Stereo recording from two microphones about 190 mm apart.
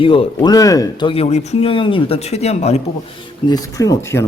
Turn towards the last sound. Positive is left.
turn(degrees=15)  # may be behind; listen again after turning